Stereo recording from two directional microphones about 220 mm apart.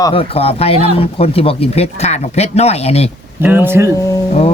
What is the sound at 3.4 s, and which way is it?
Speech, 10° right (ahead or behind).